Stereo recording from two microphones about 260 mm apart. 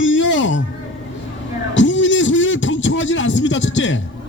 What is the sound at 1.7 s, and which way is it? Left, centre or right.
A man's voice, left.